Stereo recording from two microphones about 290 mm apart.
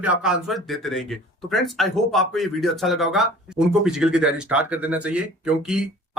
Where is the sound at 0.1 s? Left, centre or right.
Centre.